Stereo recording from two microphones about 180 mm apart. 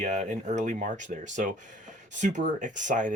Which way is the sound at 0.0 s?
45° right (ahead or behind).